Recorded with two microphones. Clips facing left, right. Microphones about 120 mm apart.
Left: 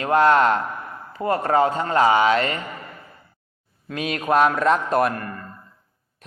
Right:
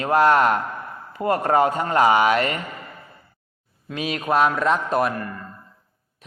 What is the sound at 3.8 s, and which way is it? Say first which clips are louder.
A man's voice: left 1 dB; centre (ahead or behind).